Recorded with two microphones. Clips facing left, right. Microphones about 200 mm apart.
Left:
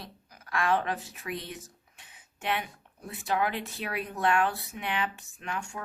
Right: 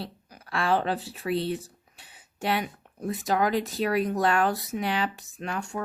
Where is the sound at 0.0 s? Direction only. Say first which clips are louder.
Right 8 dB; 30° right (ahead or behind).